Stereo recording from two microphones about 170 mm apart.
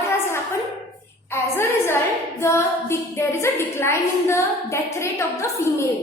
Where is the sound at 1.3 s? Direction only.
15° left (ahead or behind).